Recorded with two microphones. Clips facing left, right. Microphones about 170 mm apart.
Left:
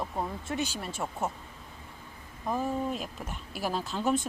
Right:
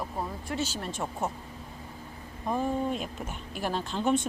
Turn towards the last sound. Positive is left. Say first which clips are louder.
# right 2 dB
turn(degrees=5)  # may be behind; listen again after turning